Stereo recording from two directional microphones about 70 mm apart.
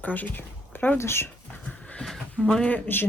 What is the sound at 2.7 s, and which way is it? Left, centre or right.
Speech, left.